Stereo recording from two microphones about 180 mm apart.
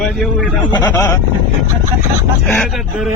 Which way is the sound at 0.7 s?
25° left (ahead or behind).